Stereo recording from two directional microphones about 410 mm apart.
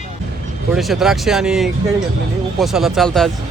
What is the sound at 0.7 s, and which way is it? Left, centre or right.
Speech, centre.